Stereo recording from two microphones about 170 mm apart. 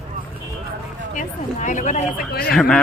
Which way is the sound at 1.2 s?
50° left (ahead or behind).